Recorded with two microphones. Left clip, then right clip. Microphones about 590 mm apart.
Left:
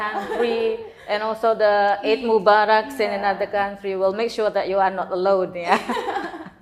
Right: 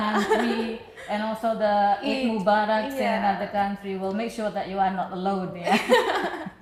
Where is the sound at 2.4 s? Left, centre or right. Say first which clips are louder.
Left 4 dB; left.